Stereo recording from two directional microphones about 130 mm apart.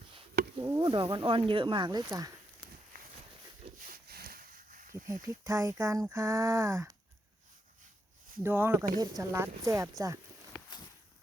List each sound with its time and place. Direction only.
0.1 s chop: 45° right (ahead or behind)
0.7 s speech: 35° right (ahead or behind)
4.4 s a sound: 90° right
5.2 s speech: 25° right (ahead or behind)
8.4 s speech: 15° right (ahead or behind)